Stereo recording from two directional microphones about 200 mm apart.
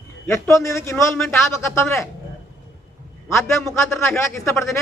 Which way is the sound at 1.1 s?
Centre (ahead or behind).